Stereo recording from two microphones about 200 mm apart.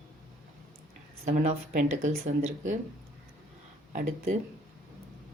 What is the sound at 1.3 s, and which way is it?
Speech, 40° right (ahead or behind).